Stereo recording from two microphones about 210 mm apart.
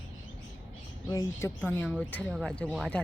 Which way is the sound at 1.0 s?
15° left (ahead or behind).